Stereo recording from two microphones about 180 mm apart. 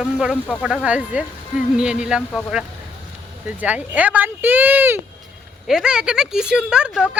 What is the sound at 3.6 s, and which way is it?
Speech, 10° right (ahead or behind).